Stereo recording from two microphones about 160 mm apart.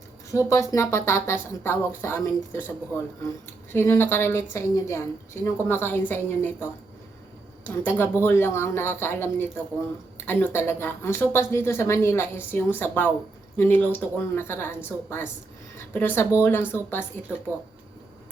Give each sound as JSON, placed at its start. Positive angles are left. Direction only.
{"t": 0.3, "sound": "a woman's voice", "side_deg": 20}
{"t": 3.7, "sound": "a woman's voice", "side_deg": 15}